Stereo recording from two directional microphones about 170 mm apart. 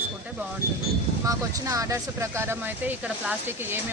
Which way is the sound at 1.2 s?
20° right (ahead or behind).